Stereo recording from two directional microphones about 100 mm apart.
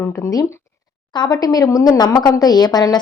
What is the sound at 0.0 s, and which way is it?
Speech, 20° left (ahead or behind).